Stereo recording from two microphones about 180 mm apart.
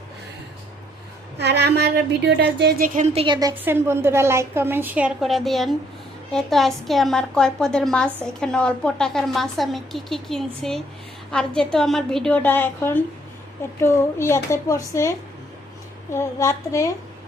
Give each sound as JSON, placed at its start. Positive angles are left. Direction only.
{"t": 1.4, "sound": "a woman's voice", "side_deg": -65}
{"t": 3.6, "sound": "a woman's voice", "side_deg": -15}
{"t": 16.1, "sound": "speech", "side_deg": 15}